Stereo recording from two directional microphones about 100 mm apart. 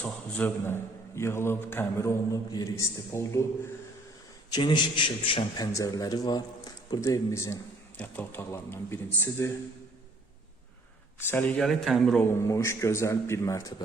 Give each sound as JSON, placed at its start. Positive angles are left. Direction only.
{"t": 0.0, "sound": "a man's voice", "side_deg": 15}
{"t": 4.5, "sound": "a man's voice", "side_deg": 50}
{"t": 5.5, "sound": "a man's voice", "side_deg": 35}
{"t": 7.0, "sound": "speech", "side_deg": 30}
{"t": 7.9, "sound": "a man's voice", "side_deg": 15}
{"t": 11.2, "sound": "a man's voice", "side_deg": 20}
{"t": 11.6, "sound": "speech", "side_deg": 0}
{"t": 12.2, "sound": "a man's voice", "side_deg": 30}